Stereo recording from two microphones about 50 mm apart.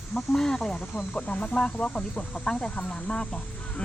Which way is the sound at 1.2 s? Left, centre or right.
Left.